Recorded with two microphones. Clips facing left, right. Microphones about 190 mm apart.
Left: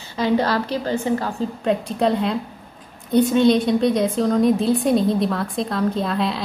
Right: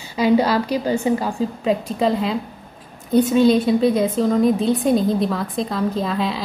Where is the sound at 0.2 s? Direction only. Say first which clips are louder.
Right 3 dB; 10° right (ahead or behind).